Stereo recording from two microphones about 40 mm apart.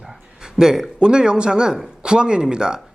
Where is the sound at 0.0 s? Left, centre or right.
Centre.